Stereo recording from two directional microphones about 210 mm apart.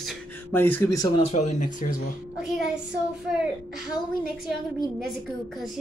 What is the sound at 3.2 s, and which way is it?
Speech, centre (ahead or behind).